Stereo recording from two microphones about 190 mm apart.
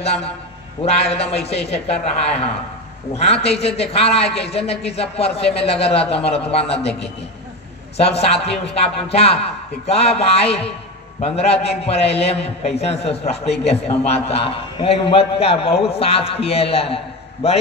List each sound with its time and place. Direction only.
0.0 s a man's voice: 35° left (ahead or behind)
8.0 s a man's voice: 30° left (ahead or behind)